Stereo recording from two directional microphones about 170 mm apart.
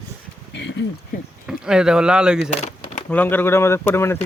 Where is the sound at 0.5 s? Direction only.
90° left.